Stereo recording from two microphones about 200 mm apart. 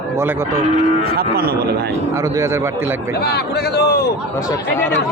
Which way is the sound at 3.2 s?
55° left (ahead or behind).